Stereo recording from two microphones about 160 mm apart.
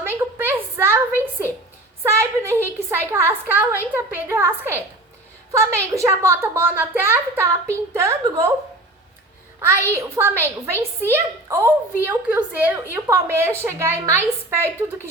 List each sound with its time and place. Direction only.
0.0 s a sound: 15° right (ahead or behind)
2.9 s a woman's voice: 15° right (ahead or behind)
9.9 s a woman's voice: 15° right (ahead or behind)